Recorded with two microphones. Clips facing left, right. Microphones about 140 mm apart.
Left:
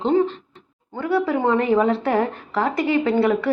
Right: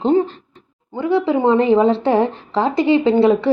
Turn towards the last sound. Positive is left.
turn(degrees=-25)  # may be behind; listen again after turning